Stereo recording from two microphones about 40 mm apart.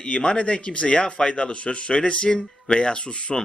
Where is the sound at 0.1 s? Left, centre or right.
Left.